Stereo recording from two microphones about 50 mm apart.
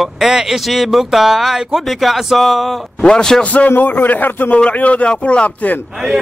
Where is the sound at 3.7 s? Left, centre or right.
Left.